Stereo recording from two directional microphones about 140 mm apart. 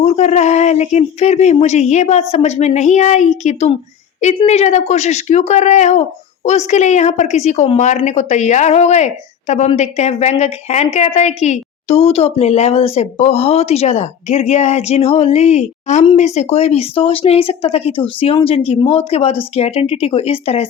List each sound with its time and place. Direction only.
0.0 s speech: 50° left (ahead or behind)